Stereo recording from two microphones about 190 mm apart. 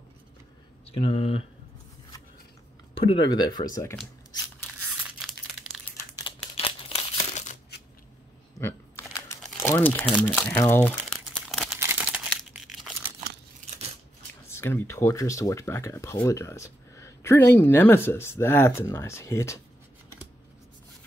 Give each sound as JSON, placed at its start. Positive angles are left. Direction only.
{"t": 0.8, "sound": "speech", "side_deg": 30}
{"t": 2.9, "sound": "speech", "side_deg": 30}
{"t": 5.2, "sound": "crumpling", "side_deg": 0}
{"t": 6.1, "sound": "crumpling", "side_deg": 30}
{"t": 8.5, "sound": "crumpling", "side_deg": 15}
{"t": 10.0, "sound": "speech", "side_deg": 5}
{"t": 11.4, "sound": "crumpling", "side_deg": 0}
{"t": 14.5, "sound": "speech", "side_deg": 10}